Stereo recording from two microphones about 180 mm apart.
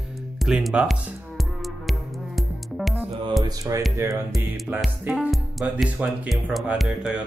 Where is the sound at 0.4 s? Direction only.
Centre (ahead or behind).